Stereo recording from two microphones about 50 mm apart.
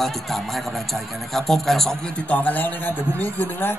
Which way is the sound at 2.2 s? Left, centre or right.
Left.